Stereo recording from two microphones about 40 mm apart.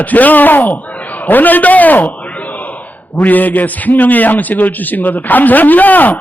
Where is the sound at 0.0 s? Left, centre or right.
Left.